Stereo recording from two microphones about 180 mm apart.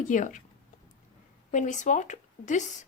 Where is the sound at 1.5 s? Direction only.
45° left (ahead or behind).